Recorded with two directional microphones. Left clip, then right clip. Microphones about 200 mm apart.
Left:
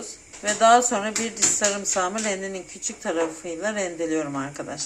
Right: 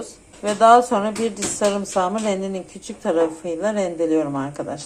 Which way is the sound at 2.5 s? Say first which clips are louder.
Right 2 dB; 5° right (ahead or behind).